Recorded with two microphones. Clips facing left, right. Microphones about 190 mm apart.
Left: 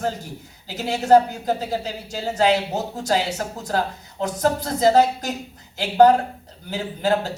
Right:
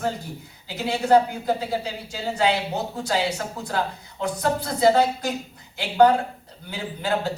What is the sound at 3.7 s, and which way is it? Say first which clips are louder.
A man's voice: left 4 dB; 40° left (ahead or behind).